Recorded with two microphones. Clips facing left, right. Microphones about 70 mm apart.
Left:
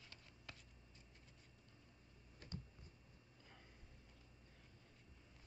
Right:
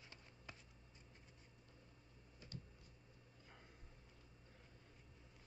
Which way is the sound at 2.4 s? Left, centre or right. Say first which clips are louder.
Left 2 dB; left.